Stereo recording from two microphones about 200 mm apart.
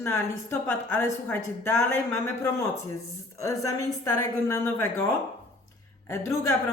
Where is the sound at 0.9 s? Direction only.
10° left (ahead or behind).